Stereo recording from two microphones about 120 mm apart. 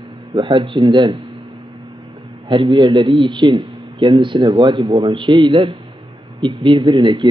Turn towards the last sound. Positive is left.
turn(degrees=-40)  # may be behind; listen again after turning